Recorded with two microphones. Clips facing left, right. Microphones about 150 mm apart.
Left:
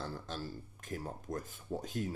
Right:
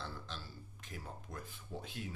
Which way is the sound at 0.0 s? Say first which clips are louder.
Left 6 dB; 45° left (ahead or behind).